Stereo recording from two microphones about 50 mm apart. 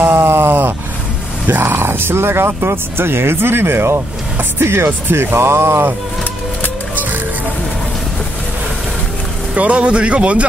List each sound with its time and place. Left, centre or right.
0.0 s groan: right
1.5 s speech: right
9.5 s a man's voice: right